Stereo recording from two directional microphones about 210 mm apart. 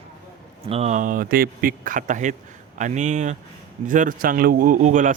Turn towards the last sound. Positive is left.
turn(degrees=-40)  # may be behind; listen again after turning